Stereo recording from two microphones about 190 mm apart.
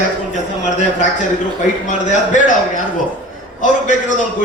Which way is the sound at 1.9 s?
40° left (ahead or behind).